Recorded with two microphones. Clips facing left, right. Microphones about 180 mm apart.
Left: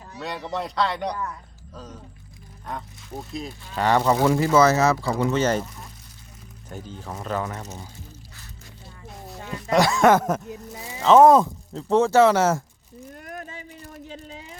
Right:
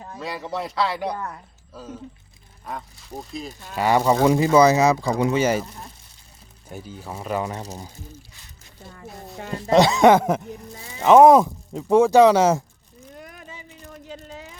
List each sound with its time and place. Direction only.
0.2 s speech: centre (ahead or behind)
3.5 s speech: 45° right (ahead or behind)
3.8 s speech: 10° right (ahead or behind)
6.7 s speech: 10° right (ahead or behind)
7.5 s speech: 30° right (ahead or behind)
9.6 s speech: 25° right (ahead or behind)
13.2 s a sound: 50° left (ahead or behind)